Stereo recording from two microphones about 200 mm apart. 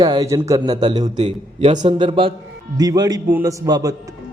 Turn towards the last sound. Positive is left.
turn(degrees=-20)  # may be behind; listen again after turning